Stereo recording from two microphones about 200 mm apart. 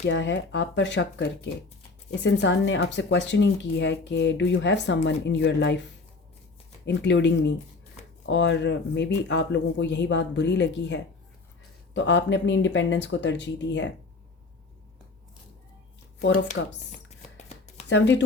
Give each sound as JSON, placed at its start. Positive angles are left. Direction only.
{"t": 0.0, "sound": "speech", "side_deg": 60}
{"t": 2.2, "sound": "speech", "side_deg": 60}
{"t": 6.8, "sound": "speech", "side_deg": 60}
{"t": 16.6, "sound": "speech", "side_deg": 60}
{"t": 17.1, "sound": "chopping", "side_deg": 35}
{"t": 17.8, "sound": "speech", "side_deg": 60}